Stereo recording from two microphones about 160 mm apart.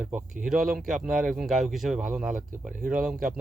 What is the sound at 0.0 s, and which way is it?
Speech, 5° right (ahead or behind).